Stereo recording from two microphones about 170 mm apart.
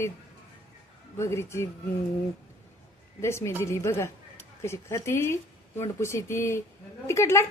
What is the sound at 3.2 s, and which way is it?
A woman's voice, 15° left (ahead or behind).